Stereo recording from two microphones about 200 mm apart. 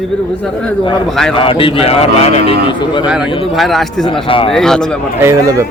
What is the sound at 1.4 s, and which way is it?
A man's voice, 25° left (ahead or behind).